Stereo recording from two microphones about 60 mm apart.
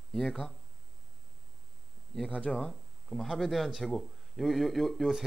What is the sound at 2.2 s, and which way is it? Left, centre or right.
Speech, centre.